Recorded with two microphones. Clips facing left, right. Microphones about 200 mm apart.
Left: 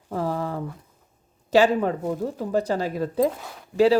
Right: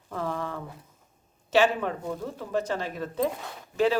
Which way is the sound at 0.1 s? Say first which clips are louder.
Left 5 dB; 35° left (ahead or behind).